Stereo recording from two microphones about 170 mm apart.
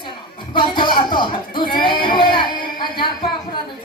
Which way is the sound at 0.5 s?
25° left (ahead or behind).